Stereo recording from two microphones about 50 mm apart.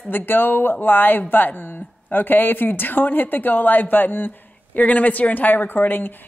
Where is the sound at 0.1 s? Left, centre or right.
Left.